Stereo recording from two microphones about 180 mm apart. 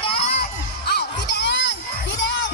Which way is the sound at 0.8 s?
65° left (ahead or behind).